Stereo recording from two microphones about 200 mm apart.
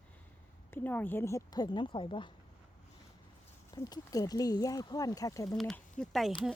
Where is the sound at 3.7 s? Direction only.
20° left (ahead or behind).